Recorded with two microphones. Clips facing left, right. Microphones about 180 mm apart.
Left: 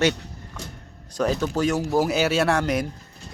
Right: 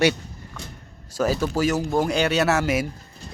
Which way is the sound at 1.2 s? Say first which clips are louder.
Right 1 dB; 5° right (ahead or behind).